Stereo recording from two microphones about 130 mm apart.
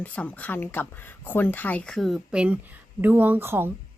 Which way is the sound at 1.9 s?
Centre (ahead or behind).